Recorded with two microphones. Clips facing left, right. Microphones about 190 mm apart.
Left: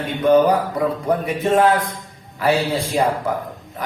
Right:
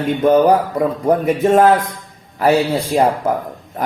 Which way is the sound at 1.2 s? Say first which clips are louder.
Right 4 dB; 45° right (ahead or behind).